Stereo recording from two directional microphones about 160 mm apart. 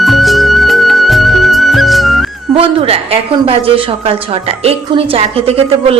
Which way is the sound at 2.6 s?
35° right (ahead or behind).